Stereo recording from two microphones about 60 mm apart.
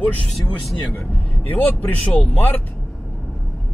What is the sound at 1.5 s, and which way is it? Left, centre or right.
Speech, left.